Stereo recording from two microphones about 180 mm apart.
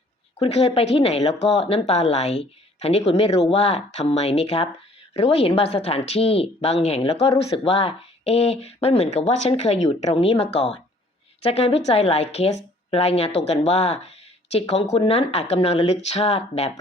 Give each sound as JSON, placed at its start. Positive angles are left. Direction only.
{"t": 0.3, "sound": "speech", "side_deg": 35}